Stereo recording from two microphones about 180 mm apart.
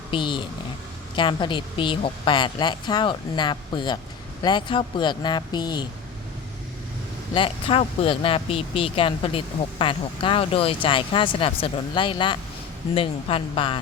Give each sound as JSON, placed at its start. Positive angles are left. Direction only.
{"t": 0.1, "sound": "speech", "side_deg": 25}
{"t": 7.3, "sound": "speech", "side_deg": 30}